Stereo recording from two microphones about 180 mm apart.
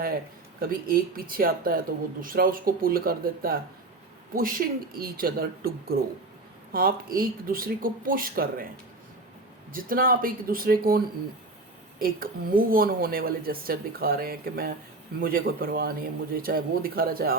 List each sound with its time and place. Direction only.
0.6 s a woman's voice: 55° right (ahead or behind)
9.7 s a woman's voice: 50° right (ahead or behind)